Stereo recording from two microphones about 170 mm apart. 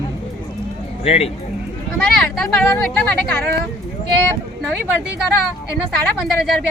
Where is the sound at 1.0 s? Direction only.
35° left (ahead or behind).